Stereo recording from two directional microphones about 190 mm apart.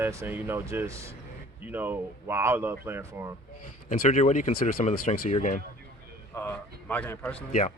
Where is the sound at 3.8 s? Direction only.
35° left (ahead or behind).